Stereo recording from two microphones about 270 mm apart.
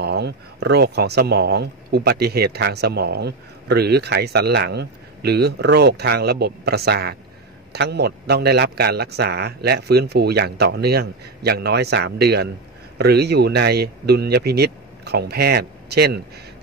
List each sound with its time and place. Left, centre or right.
0.0 s a man's voice: right